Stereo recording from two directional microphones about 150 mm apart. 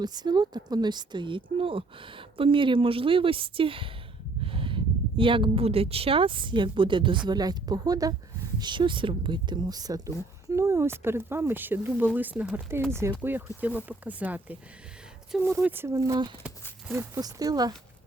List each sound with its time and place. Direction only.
0.0 s speech: 25° right (ahead or behind)